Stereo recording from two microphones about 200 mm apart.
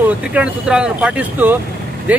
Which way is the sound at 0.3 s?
5° right (ahead or behind).